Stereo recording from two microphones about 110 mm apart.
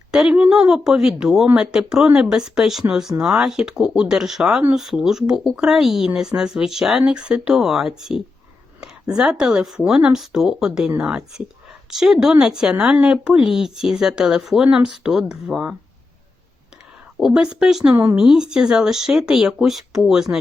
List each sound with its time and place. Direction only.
0.1 s speech: 5° right (ahead or behind)
17.2 s speech: 5° right (ahead or behind)
17.9 s speech: 15° right (ahead or behind)
18.2 s speech: 5° right (ahead or behind)